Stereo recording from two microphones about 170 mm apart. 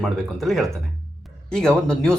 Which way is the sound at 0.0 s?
Centre (ahead or behind).